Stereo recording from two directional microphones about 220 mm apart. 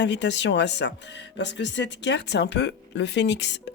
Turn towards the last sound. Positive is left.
turn(degrees=50)  # may be behind; listen again after turning